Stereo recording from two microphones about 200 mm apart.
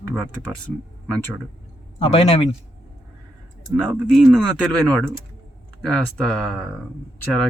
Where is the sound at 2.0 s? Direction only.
30° left (ahead or behind).